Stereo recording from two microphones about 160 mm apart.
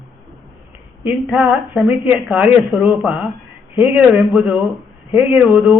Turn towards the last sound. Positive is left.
turn(degrees=-5)  # may be behind; listen again after turning